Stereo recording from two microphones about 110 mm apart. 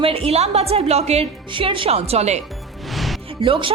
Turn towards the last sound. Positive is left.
turn(degrees=-55)  # may be behind; listen again after turning